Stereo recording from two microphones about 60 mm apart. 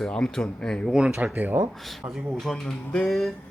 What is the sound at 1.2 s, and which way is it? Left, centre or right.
Speech, right.